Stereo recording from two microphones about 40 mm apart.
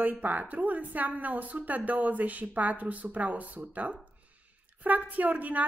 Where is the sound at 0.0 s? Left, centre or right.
Right.